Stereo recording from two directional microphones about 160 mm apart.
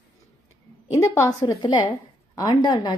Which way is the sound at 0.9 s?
20° left (ahead or behind).